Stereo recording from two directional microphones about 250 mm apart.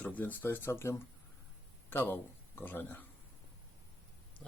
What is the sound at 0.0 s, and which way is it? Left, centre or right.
Speech, centre.